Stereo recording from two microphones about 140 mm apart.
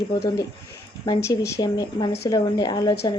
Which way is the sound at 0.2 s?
25° left (ahead or behind).